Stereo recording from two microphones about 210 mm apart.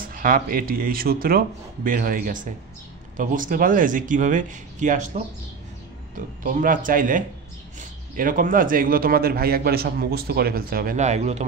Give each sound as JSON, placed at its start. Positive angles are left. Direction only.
{"t": 0.0, "sound": "speech", "side_deg": -40}